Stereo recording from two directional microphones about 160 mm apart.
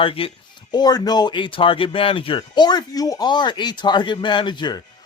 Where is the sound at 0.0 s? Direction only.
35° left (ahead or behind).